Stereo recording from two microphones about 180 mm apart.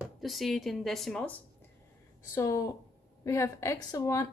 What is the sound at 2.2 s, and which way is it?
A woman's voice, 15° left (ahead or behind).